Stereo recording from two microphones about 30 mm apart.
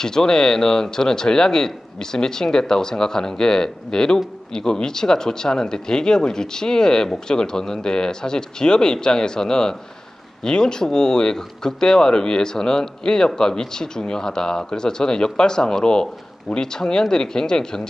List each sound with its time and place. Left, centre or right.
0.0 s speech: left